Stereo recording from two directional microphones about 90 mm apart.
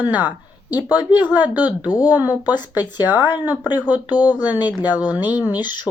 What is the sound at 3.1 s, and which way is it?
Speech, 50° left (ahead or behind).